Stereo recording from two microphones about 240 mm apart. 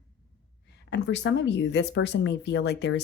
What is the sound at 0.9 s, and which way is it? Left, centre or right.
Speech, left.